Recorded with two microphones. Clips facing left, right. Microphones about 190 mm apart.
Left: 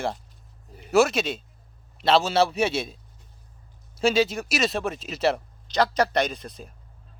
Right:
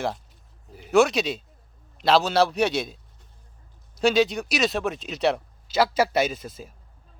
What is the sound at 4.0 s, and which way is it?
Speech, centre (ahead or behind).